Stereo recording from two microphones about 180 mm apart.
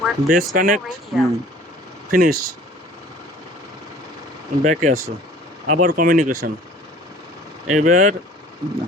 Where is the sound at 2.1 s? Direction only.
50° right (ahead or behind).